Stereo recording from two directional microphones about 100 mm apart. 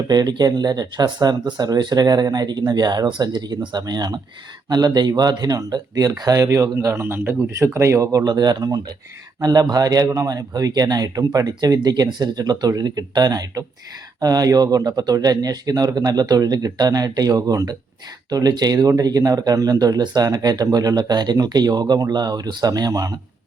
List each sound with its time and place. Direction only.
0.1 s speech: 45° right (ahead or behind)